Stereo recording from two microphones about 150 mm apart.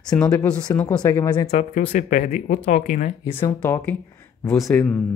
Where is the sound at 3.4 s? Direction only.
10° left (ahead or behind).